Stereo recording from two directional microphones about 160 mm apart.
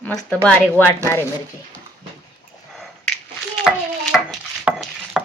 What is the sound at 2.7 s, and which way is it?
Sniff, centre (ahead or behind).